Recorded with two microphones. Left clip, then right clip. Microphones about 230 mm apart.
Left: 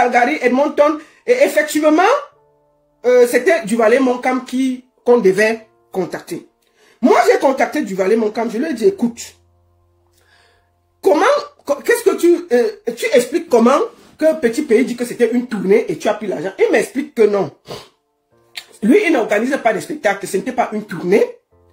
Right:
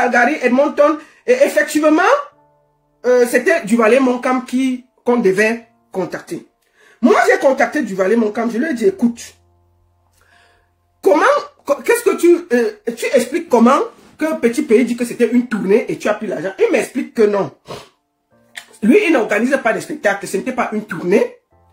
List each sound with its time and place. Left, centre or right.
0.0 s speech: centre
1.3 s speech: left
1.8 s speech: centre
3.1 s speech: centre
11.1 s speech: centre
18.9 s speech: centre